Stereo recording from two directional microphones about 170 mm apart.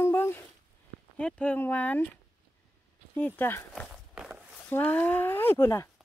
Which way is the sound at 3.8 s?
Centre (ahead or behind).